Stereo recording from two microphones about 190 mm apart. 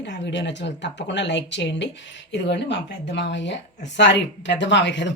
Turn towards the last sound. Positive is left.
turn(degrees=70)  # may be behind; listen again after turning